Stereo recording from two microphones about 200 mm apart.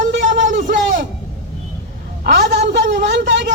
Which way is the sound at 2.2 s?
60° right (ahead or behind).